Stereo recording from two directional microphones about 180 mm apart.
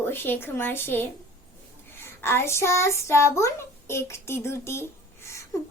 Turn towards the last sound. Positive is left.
turn(degrees=15)  # may be behind; listen again after turning